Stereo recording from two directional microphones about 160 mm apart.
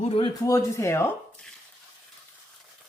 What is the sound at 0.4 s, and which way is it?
Speech, 20° left (ahead or behind).